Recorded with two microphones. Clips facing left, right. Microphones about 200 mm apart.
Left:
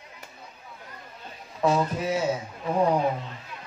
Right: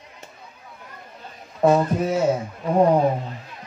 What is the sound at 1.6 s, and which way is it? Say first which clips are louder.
Speech: right 6 dB; 50° right (ahead or behind).